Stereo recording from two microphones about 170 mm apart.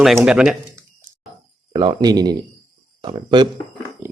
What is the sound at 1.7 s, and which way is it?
Speech, 25° right (ahead or behind).